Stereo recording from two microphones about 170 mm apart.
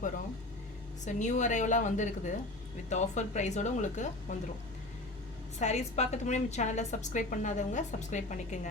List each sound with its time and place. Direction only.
1.0 s a woman's voice: 45° left (ahead or behind)
5.5 s a woman's voice: 40° left (ahead or behind)